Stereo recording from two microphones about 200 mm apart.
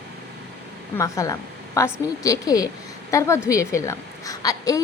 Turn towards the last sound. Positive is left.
turn(degrees=15)  # may be behind; listen again after turning